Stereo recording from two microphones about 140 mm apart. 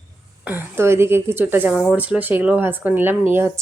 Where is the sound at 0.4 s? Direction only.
15° right (ahead or behind).